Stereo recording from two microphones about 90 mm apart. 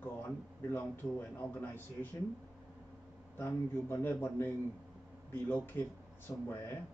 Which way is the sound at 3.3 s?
25° left (ahead or behind).